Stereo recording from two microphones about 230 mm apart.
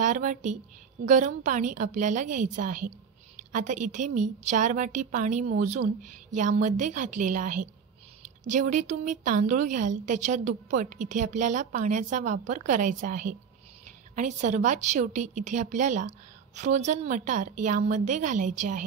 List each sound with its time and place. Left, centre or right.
0.0 s a woman's voice: right